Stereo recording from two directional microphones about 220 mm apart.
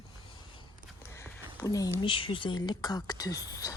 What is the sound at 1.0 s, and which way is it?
Speech, 10° left (ahead or behind).